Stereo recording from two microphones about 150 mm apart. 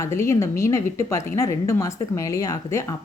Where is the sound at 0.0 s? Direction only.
20° left (ahead or behind).